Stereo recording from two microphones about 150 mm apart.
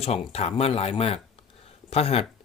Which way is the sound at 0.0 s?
45° left (ahead or behind).